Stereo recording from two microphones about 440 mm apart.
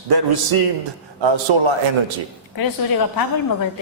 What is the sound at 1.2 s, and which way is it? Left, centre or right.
Speech, right.